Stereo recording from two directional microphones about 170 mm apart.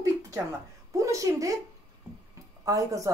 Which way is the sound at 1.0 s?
20° right (ahead or behind).